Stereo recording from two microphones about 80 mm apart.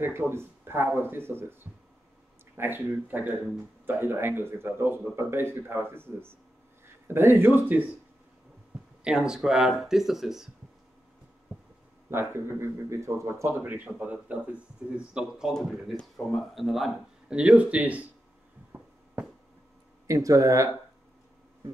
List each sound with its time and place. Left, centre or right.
0.0 s speech: right
9.0 s speech: centre
12.1 s speech: right
13.6 s speech: right; by 17.4 s centre
17.4 s speech: centre
20.1 s speech: right